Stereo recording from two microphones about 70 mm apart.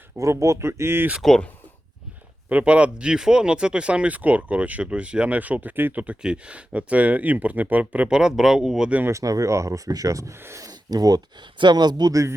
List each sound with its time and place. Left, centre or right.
0.2 s speech: right
1.2 s speech: centre
2.5 s speech: centre
8.1 s speech: centre
9.2 s speech: right
10.3 s speech: right
10.6 s speech: right
11.6 s speech: right